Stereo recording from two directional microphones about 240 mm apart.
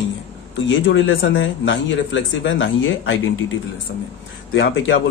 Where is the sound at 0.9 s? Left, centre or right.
Left.